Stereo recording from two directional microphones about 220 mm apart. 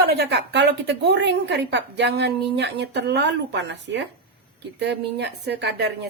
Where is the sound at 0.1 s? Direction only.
50° right (ahead or behind).